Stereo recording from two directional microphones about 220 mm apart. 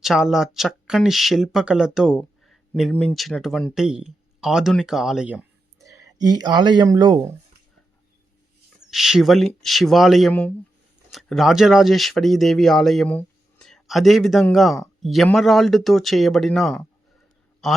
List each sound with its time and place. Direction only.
0.0 s speech: centre (ahead or behind)
8.9 s speech: centre (ahead or behind)